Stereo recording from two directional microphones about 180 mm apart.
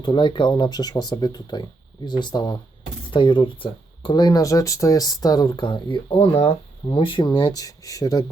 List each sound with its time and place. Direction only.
0.0 s speech: 25° left (ahead or behind)